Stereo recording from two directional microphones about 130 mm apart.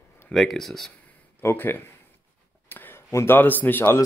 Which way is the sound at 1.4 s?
15° left (ahead or behind).